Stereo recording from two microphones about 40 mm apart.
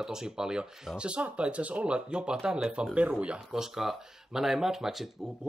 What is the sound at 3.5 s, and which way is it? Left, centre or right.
Speech, centre.